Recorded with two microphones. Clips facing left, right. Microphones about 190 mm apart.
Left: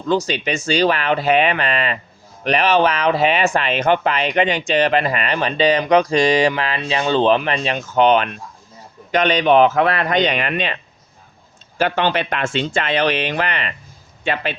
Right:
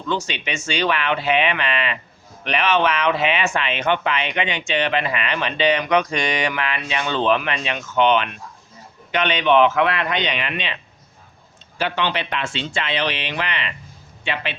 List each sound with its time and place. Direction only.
0.1 s speech: 40° left (ahead or behind)
11.8 s speech: 45° left (ahead or behind)